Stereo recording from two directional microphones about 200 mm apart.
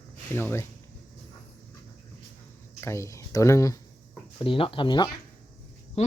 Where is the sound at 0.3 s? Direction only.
10° left (ahead or behind).